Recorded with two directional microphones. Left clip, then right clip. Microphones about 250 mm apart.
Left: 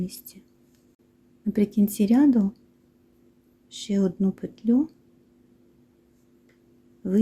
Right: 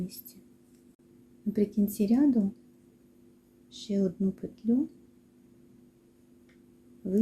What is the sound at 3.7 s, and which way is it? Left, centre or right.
Speech, left.